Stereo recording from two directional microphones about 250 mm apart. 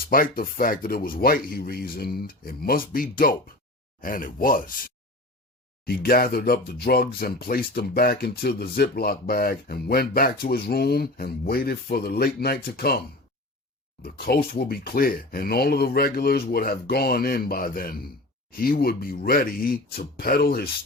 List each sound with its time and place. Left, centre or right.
0.1 s speech: left
5.8 s speech: left
14.0 s speech: left